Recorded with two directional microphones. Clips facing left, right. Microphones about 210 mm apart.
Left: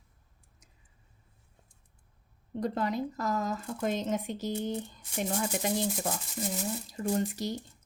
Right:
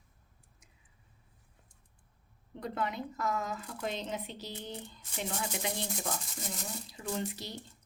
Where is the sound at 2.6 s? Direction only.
40° left (ahead or behind).